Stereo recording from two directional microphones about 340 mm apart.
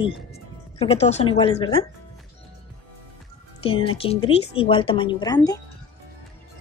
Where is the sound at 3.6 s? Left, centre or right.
Centre.